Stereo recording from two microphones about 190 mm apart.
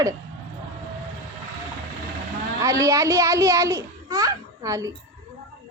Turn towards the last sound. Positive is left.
turn(degrees=-15)  # may be behind; listen again after turning